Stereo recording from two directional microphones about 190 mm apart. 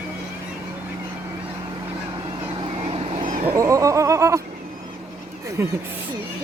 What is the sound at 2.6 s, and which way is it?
Vehicle, 25° right (ahead or behind).